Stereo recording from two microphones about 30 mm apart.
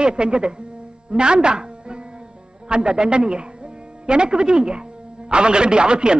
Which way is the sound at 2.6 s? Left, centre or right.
Right.